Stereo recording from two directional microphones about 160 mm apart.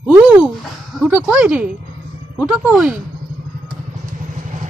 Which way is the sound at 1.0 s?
5° right (ahead or behind).